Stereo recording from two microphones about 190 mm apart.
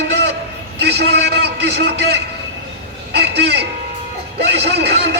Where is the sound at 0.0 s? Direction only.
60° right (ahead or behind).